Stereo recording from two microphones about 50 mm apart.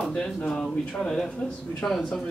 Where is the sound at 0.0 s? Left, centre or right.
Centre.